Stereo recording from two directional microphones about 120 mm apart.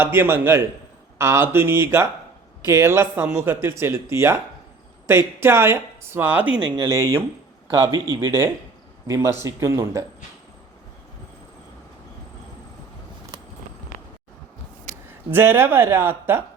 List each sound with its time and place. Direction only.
0.0 s speech: 20° right (ahead or behind)
6.8 s speech: 25° right (ahead or behind)
7.8 s a man's voice: 40° right (ahead or behind)
8.3 s speech: 20° right (ahead or behind)
14.9 s a sound: 90° right
15.3 s speech: 20° right (ahead or behind)